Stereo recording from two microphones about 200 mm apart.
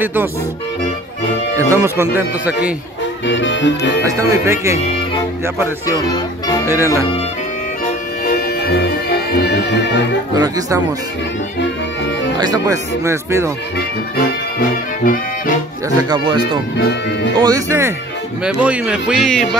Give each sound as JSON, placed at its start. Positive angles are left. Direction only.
{"t": 0.0, "sound": "speech", "side_deg": -10}
{"t": 1.5, "sound": "speech", "side_deg": -15}
{"t": 3.3, "sound": "music", "side_deg": 65}
{"t": 4.0, "sound": "speech", "side_deg": -15}
{"t": 5.9, "sound": "speech", "side_deg": 20}
{"t": 6.6, "sound": "speech", "side_deg": -10}
{"t": 8.3, "sound": "music", "side_deg": 50}
{"t": 10.3, "sound": "speech", "side_deg": -20}
{"t": 12.4, "sound": "speech", "side_deg": -20}
{"t": 13.7, "sound": "brass instrument", "side_deg": 45}
{"t": 16.1, "sound": "a man's voice", "side_deg": -25}